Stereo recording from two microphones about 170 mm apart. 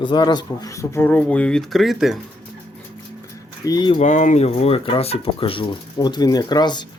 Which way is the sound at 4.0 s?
50° left (ahead or behind).